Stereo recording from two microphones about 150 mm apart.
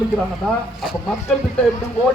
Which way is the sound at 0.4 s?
Centre (ahead or behind).